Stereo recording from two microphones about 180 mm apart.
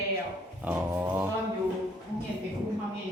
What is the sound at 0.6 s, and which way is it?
Speech, 10° right (ahead or behind).